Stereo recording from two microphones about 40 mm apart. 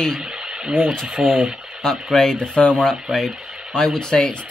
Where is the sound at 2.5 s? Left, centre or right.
Left.